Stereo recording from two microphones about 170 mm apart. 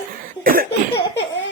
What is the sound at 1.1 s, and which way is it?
Cough, 90° left.